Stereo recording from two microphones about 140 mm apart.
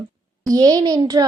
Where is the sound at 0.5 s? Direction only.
30° right (ahead or behind).